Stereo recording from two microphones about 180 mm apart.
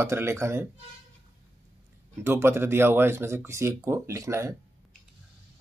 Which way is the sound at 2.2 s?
15° right (ahead or behind).